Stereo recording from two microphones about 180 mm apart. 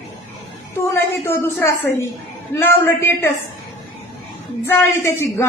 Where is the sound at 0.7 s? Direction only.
15° left (ahead or behind).